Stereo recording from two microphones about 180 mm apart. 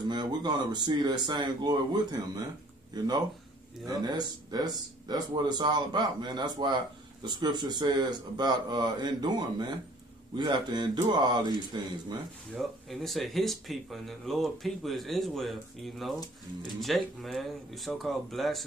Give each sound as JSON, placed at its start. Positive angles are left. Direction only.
{"t": 0.1, "sound": "speech", "side_deg": -25}
{"t": 12.5, "sound": "speech", "side_deg": 0}